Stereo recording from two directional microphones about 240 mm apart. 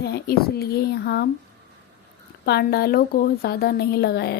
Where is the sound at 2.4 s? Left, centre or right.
Left.